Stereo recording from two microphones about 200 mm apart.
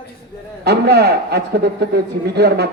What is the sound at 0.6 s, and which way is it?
A man's voice, 55° right (ahead or behind).